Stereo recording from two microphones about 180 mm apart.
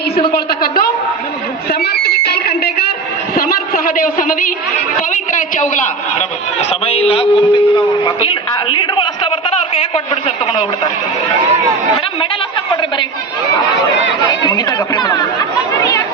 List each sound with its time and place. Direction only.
0.3 s a woman's voice: 55° left (ahead or behind)
1.8 s a sound: 60° left (ahead or behind)
4.9 s a man's voice: 45° left (ahead or behind)
14.3 s speech: 20° left (ahead or behind)
15.8 s chatter: 20° left (ahead or behind)